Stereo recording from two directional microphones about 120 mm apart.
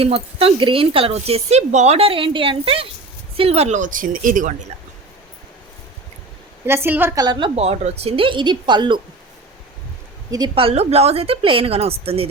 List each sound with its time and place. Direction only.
0.0 s speech: 50° right (ahead or behind); by 4.5 s 90° right
6.7 s a woman's voice: 20° right (ahead or behind)
7.2 s a woman's voice: 40° right (ahead or behind)
7.5 s speech: 60° right (ahead or behind); by 9.0 s 40° right (ahead or behind)
10.5 s speech: 55° right (ahead or behind)